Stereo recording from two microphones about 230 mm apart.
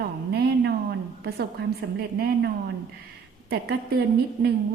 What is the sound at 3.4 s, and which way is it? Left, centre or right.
A woman's voice, right.